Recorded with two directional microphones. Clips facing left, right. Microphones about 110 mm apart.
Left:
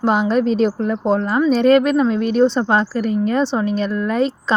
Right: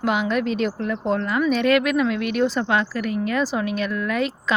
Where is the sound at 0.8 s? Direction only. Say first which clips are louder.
Left 5 dB; 20° left (ahead or behind).